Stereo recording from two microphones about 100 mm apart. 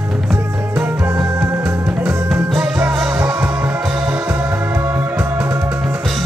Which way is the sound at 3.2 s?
25° right (ahead or behind).